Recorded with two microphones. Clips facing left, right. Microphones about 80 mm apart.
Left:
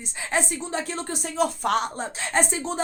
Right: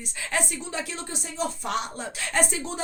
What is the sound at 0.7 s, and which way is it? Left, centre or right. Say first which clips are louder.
Speech: left 4 dB; left.